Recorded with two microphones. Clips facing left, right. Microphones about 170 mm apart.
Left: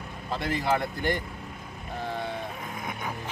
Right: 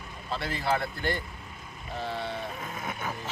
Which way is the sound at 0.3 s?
15° left (ahead or behind).